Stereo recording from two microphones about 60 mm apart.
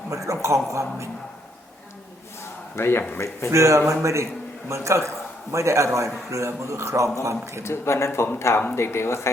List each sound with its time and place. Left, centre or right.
0.1 s a man's voice: right
2.7 s speech: left
3.5 s a man's voice: right
7.6 s speech: left